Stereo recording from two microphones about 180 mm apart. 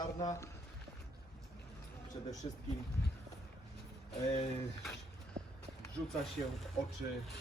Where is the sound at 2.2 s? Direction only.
25° left (ahead or behind).